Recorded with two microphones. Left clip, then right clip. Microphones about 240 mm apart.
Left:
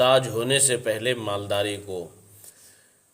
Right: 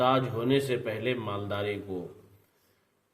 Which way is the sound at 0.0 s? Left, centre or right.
Left.